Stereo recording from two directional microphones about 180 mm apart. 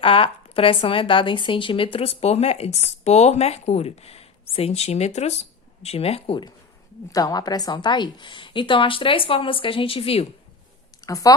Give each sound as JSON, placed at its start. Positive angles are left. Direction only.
{"t": 0.0, "sound": "a woman's voice", "side_deg": 30}
{"t": 11.0, "sound": "speech", "side_deg": 20}